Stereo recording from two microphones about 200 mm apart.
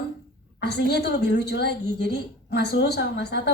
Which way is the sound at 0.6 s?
55° left (ahead or behind).